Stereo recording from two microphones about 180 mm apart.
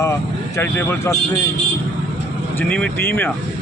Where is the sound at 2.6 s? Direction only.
5° left (ahead or behind).